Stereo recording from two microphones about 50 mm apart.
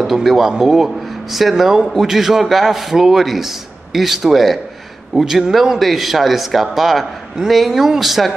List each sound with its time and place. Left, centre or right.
0.0 s a man's voice: centre